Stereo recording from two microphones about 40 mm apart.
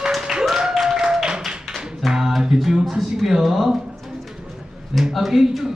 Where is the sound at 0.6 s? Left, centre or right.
Centre.